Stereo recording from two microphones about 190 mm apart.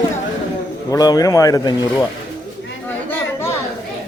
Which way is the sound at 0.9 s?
20° left (ahead or behind).